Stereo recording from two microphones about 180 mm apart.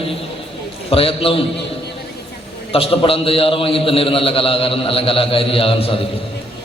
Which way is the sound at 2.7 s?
30° left (ahead or behind).